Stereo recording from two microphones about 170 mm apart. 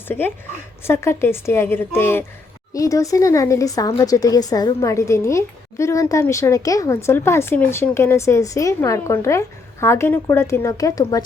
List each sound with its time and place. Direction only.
0.1 s speech: 10° left (ahead or behind)